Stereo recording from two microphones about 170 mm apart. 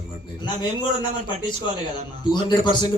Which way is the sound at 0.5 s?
40° right (ahead or behind).